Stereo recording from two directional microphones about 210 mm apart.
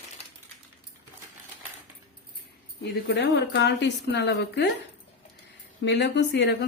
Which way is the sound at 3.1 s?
50° left (ahead or behind).